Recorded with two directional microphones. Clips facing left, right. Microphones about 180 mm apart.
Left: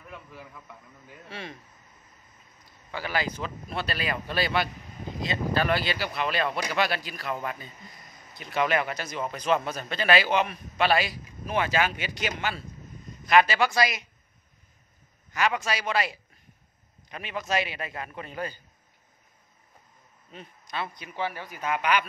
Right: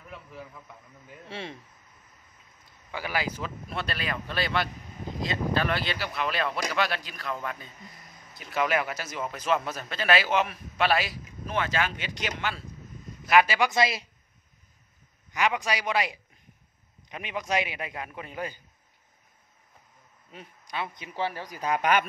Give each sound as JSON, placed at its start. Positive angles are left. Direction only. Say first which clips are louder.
{"t": 1.3, "sound": "speech", "louder": "right 2 dB", "side_deg": -25}
{"t": 2.9, "sound": "speech", "louder": "left 1 dB", "side_deg": -10}
{"t": 11.4, "sound": "speech", "louder": "left 3 dB", "side_deg": 10}
{"t": 13.3, "sound": "a man's voice", "louder": "left 1 dB", "side_deg": -10}
{"t": 15.3, "sound": "a man's voice", "louder": "even", "side_deg": -15}
{"t": 20.2, "sound": "speech", "louder": "left 1 dB", "side_deg": -10}
{"t": 21.1, "sound": "speech", "louder": "right 2 dB", "side_deg": -35}